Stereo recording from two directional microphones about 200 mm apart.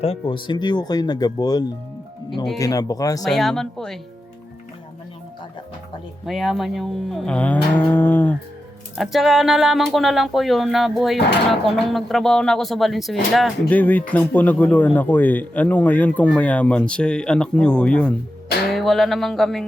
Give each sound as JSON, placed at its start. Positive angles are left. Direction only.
{"t": 0.0, "sound": "speech", "side_deg": 25}
{"t": 3.2, "sound": "speech", "side_deg": 0}
{"t": 6.2, "sound": "speech", "side_deg": 0}
{"t": 9.0, "sound": "speech", "side_deg": 0}